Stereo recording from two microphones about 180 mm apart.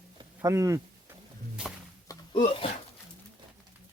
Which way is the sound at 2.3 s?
30° left (ahead or behind).